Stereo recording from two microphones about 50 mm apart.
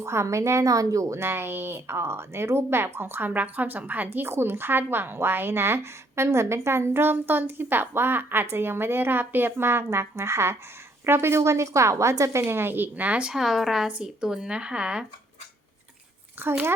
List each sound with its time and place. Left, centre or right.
0.0 s a woman's voice: right
13.1 s a woman's voice: right
13.3 s speech: centre
16.4 s a woman's voice: right